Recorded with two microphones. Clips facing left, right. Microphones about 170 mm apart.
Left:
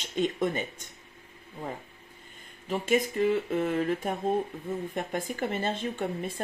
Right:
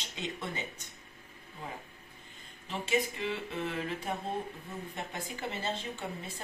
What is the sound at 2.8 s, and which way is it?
Speech, 45° left (ahead or behind).